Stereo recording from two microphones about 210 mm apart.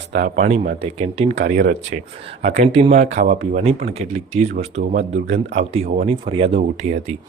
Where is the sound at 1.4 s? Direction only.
40° right (ahead or behind).